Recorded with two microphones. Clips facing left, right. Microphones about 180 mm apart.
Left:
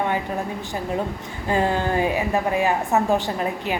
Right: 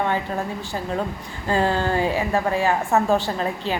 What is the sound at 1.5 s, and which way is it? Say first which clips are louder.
A woman's voice: even; 15° left (ahead or behind).